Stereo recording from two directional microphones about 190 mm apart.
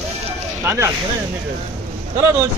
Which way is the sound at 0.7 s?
15° right (ahead or behind).